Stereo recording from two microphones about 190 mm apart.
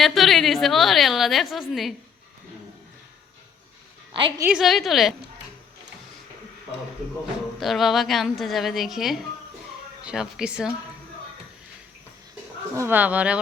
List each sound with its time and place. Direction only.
0.0 s a woman's voice: centre (ahead or behind)
4.1 s a woman's voice: 25° right (ahead or behind)
4.4 s a woman's voice: centre (ahead or behind)
7.6 s a woman's voice: centre (ahead or behind)
12.7 s speech: 10° right (ahead or behind)